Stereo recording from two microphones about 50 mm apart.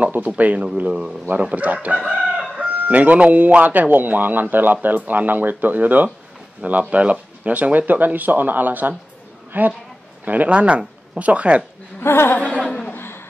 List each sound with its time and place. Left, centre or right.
0.2 s speech: right
1.3 s speech: right
2.0 s chicken: centre
2.5 s a woman's voice: right
12.0 s speech: left
12.4 s a sound: left
12.9 s a sound: left